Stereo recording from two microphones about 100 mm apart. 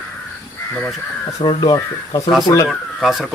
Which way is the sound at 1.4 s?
45° left (ahead or behind).